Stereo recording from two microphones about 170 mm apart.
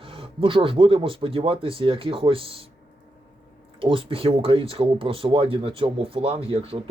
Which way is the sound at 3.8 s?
30° right (ahead or behind).